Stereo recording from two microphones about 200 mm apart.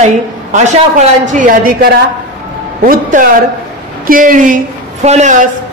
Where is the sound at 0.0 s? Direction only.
35° right (ahead or behind).